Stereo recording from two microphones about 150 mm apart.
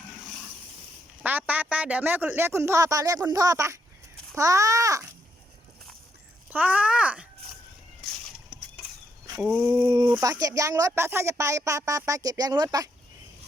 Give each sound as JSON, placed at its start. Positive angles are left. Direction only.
{"t": 1.2, "sound": "a man's voice", "side_deg": -10}
{"t": 6.5, "sound": "a man's voice", "side_deg": -10}
{"t": 9.4, "sound": "a man's voice", "side_deg": -10}